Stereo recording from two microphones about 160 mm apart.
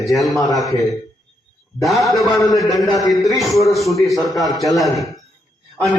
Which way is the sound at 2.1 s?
20° left (ahead or behind).